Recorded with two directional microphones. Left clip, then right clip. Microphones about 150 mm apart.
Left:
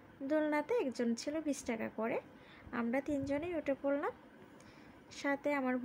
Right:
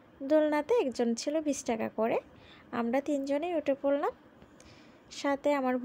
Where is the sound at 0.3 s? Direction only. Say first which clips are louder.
Right 8 dB; 30° right (ahead or behind).